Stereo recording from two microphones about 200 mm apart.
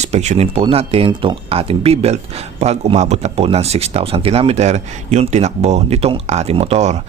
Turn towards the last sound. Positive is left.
turn(degrees=-35)  # may be behind; listen again after turning